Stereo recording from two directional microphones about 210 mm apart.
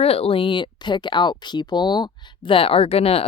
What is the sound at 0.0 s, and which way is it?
Speech, 30° left (ahead or behind).